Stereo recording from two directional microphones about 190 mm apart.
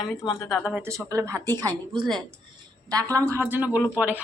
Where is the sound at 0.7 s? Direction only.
10° right (ahead or behind).